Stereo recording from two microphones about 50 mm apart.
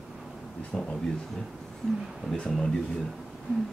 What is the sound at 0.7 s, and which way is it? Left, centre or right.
Speech, centre.